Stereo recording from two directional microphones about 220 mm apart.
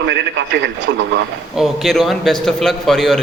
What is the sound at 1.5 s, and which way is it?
A man's voice, centre (ahead or behind).